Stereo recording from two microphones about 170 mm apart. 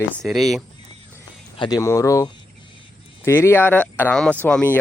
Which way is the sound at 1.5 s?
30° left (ahead or behind).